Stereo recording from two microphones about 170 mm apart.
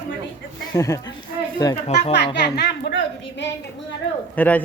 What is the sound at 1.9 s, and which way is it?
Speech, 40° left (ahead or behind).